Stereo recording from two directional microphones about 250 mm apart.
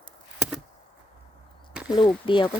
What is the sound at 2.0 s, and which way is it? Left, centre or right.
Speech, centre.